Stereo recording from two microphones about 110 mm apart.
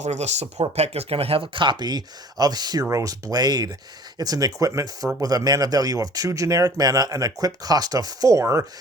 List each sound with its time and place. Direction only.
0.0 s speech: 90° right
0.8 s speech: 65° right (ahead or behind); by 8.6 s 30° right (ahead or behind)